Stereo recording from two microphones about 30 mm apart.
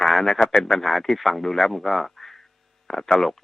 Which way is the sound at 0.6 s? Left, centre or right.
Centre.